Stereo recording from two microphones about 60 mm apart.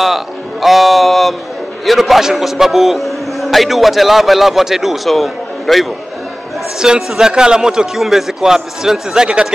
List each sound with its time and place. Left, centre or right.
0.0 s music: centre
1.9 s a man's voice: centre
6.8 s a man's voice: centre